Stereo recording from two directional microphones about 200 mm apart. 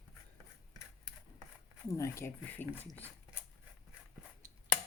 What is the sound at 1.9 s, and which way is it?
Speech, 15° left (ahead or behind).